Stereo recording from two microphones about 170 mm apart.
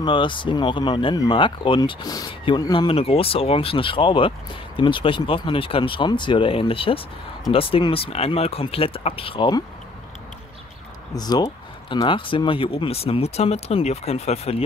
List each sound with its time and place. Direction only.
0.0 s speech: 30° left (ahead or behind)
11.1 s speech: 25° left (ahead or behind)